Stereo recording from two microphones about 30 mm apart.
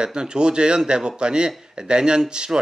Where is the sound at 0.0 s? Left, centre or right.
Right.